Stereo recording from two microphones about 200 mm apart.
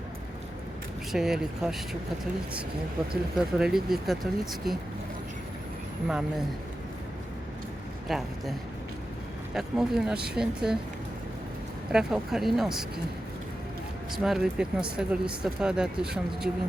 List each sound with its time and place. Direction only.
1.1 s speech: centre (ahead or behind)
3.1 s speech: 5° right (ahead or behind)
8.0 s speech: centre (ahead or behind)
9.6 s speech: 5° right (ahead or behind)
11.9 s speech: 5° right (ahead or behind)
14.1 s speech: centre (ahead or behind)